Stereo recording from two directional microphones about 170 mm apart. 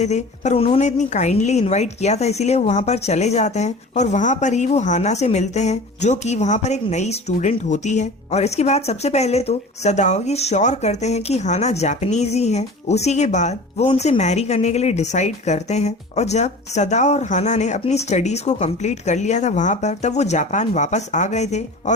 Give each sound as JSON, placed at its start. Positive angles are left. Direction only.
{"t": 0.0, "sound": "a woman's voice", "side_deg": 40}